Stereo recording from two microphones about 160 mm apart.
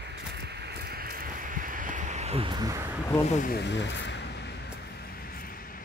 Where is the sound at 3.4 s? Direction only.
80° left.